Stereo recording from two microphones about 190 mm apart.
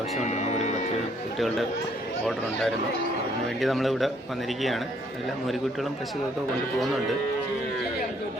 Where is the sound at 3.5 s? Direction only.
Centre (ahead or behind).